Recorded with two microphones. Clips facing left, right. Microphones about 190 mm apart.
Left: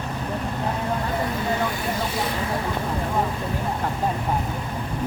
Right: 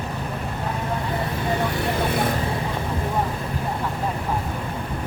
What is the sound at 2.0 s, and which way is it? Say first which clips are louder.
Vehicle: right 4 dB; 55° right (ahead or behind).